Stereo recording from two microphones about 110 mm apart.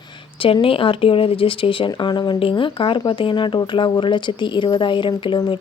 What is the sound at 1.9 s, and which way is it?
Speech, 45° left (ahead or behind).